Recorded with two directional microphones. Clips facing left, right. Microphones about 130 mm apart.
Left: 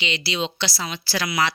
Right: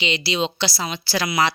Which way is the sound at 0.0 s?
20° right (ahead or behind).